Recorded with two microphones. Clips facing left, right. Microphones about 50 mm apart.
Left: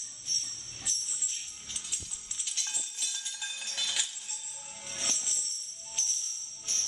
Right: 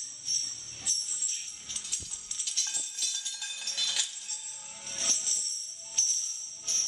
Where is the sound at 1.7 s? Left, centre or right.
Centre.